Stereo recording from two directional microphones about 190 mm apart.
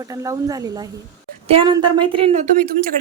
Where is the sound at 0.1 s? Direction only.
20° right (ahead or behind); by 2.5 s 35° right (ahead or behind).